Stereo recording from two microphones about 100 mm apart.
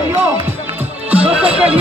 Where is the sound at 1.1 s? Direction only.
10° right (ahead or behind).